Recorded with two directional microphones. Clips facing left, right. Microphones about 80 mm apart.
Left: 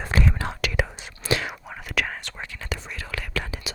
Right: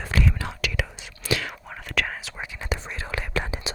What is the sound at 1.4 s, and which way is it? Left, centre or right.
Whispering, centre.